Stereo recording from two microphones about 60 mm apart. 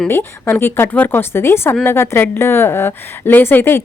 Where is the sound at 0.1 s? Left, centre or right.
Left.